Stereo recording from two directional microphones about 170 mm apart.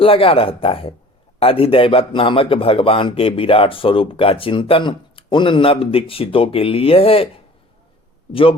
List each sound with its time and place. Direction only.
0.0 s speech: 35° left (ahead or behind)